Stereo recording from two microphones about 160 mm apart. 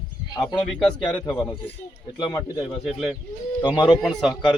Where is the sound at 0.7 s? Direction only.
5° left (ahead or behind).